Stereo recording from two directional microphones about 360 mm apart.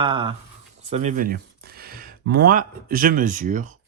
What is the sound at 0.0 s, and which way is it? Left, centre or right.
Speech, centre.